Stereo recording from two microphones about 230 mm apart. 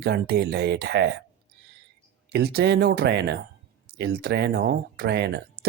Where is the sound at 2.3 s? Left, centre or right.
Right.